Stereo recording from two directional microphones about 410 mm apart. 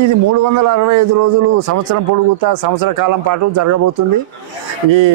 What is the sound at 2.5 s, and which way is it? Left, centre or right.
A man's voice, right.